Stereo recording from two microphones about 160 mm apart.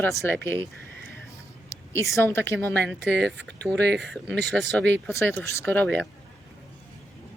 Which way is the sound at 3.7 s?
90° right.